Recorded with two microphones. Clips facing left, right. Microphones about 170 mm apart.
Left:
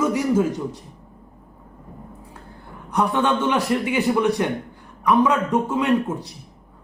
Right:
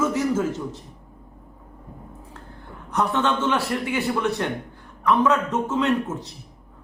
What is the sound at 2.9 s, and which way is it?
A man's voice, 10° left (ahead or behind).